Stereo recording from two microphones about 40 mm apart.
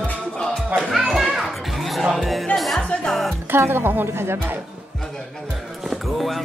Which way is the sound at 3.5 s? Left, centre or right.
Right.